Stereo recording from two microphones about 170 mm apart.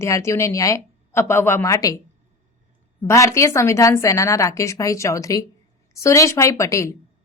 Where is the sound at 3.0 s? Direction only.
15° left (ahead or behind).